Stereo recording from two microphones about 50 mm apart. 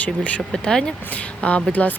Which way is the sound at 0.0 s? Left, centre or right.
Left.